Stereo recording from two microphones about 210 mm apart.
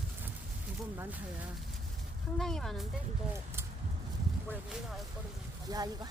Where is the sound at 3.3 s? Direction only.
10° right (ahead or behind).